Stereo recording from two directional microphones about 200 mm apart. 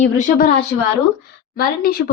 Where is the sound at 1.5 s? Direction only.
50° left (ahead or behind).